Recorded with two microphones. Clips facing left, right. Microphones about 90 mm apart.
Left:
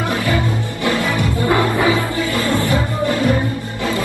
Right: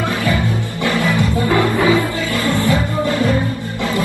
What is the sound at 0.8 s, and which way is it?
Music, 20° left (ahead or behind).